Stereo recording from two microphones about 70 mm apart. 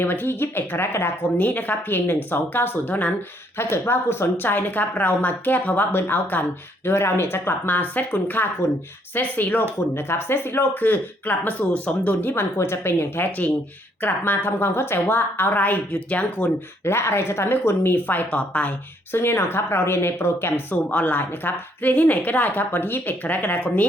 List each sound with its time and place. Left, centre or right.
0.0 s speech: left
3.6 s speech: left; by 16.5 s centre
16.8 s speech: left; by 18.7 s centre
19.1 s speech: left